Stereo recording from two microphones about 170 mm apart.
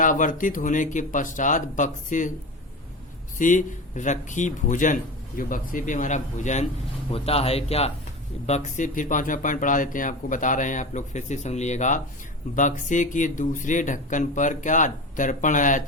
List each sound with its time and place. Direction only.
0.0 s speech: 50° left (ahead or behind)
3.3 s speech: 50° left (ahead or behind)